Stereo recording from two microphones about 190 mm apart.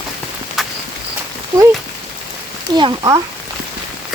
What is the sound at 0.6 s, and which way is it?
Walk, centre (ahead or behind).